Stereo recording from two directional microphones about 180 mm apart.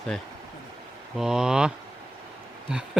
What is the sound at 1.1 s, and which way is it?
Speech, 5° right (ahead or behind).